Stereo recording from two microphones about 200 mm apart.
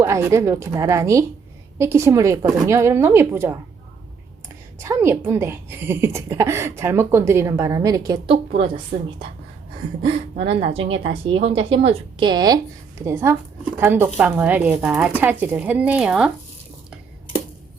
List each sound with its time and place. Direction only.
0.0 s a woman's voice: 15° right (ahead or behind)